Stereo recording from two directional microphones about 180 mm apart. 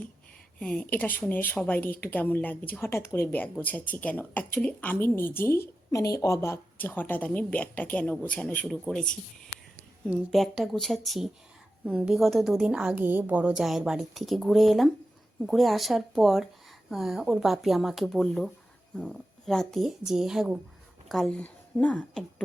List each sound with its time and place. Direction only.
0.6 s a woman's voice: 5° left (ahead or behind)